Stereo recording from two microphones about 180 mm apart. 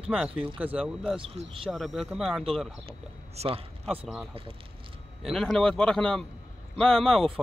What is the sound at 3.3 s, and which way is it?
Speech, 30° right (ahead or behind).